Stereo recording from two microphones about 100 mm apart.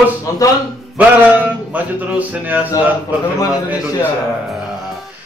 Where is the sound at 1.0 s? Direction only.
15° right (ahead or behind).